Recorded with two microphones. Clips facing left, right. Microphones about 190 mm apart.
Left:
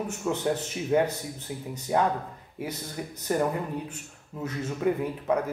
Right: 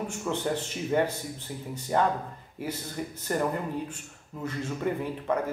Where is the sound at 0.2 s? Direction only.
5° left (ahead or behind).